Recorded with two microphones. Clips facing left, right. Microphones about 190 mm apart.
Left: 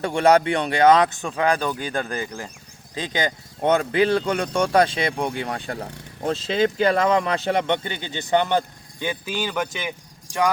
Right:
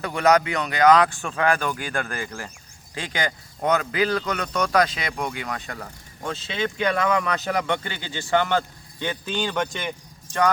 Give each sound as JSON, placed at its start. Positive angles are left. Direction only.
{"t": 0.0, "sound": "speech", "side_deg": 30}